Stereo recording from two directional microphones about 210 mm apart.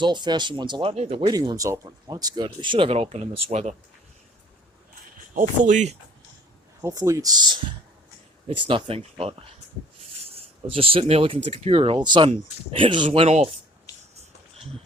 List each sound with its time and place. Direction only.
0.0 s speech: 20° right (ahead or behind)
5.3 s speech: 40° right (ahead or behind)
6.8 s speech: 15° right (ahead or behind)
10.3 s speech: 25° right (ahead or behind)